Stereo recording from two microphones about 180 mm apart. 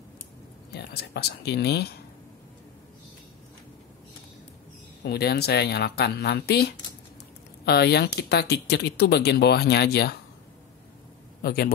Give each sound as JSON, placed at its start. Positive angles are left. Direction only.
{"t": 0.7, "sound": "speech", "side_deg": 65}
{"t": 5.0, "sound": "speech", "side_deg": 65}
{"t": 11.4, "sound": "speech", "side_deg": 60}